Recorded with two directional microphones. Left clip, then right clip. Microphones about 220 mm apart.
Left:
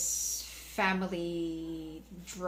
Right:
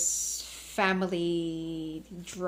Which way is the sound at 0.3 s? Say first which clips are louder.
Right 3 dB; 40° right (ahead or behind).